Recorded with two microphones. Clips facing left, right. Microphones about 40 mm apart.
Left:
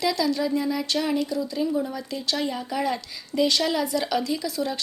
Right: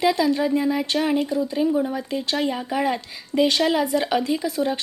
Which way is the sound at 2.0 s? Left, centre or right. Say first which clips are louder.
Right 4 dB; right.